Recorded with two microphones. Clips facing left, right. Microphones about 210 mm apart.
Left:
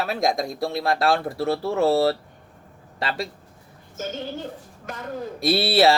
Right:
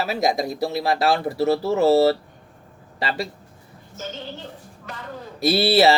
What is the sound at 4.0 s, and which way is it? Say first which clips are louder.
A woman's voice: left 4 dB; 50° left (ahead or behind).